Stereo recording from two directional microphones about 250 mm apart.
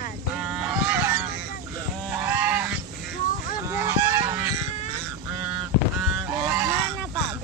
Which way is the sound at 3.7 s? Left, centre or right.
Centre.